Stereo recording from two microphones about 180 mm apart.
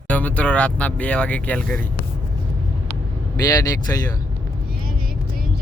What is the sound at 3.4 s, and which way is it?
Speech, 20° left (ahead or behind).